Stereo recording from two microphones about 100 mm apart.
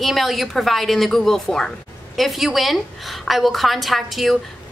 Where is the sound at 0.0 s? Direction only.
Centre (ahead or behind).